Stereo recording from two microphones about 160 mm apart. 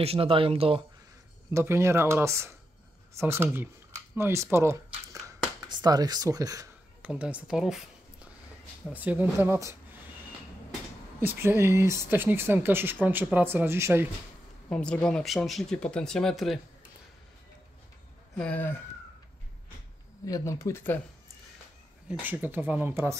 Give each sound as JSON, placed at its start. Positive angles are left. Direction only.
{"t": 0.0, "sound": "speech", "side_deg": -35}
{"t": 1.5, "sound": "speech", "side_deg": -15}
{"t": 4.1, "sound": "a sound", "side_deg": -15}
{"t": 5.7, "sound": "speech", "side_deg": -25}
{"t": 7.0, "sound": "speech", "side_deg": -10}
{"t": 11.1, "sound": "speech", "side_deg": -15}
{"t": 14.7, "sound": "speech", "side_deg": 5}
{"t": 18.4, "sound": "speech", "side_deg": 10}
{"t": 20.2, "sound": "speech", "side_deg": 20}
{"t": 22.0, "sound": "speech", "side_deg": -10}